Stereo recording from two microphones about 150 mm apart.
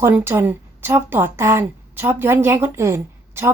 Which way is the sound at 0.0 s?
15° right (ahead or behind).